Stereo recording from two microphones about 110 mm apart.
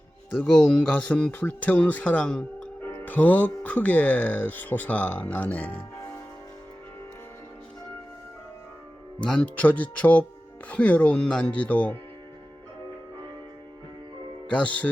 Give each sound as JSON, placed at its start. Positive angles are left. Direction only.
{"t": 0.4, "sound": "speech", "side_deg": 10}
{"t": 9.2, "sound": "speech", "side_deg": 10}
{"t": 14.4, "sound": "speech", "side_deg": 10}